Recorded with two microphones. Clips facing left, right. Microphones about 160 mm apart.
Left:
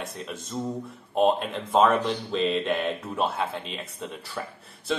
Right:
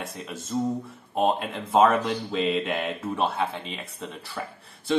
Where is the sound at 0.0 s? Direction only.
Centre (ahead or behind).